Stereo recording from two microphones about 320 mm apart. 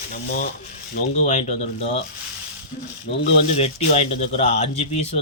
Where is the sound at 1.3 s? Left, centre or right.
Centre.